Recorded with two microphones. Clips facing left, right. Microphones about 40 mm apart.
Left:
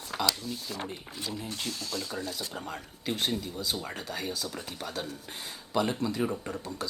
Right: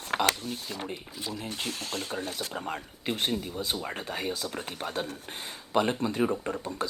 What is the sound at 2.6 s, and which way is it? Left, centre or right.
Speech, right.